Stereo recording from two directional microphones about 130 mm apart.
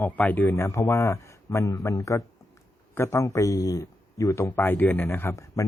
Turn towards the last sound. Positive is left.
turn(degrees=25)  # may be behind; listen again after turning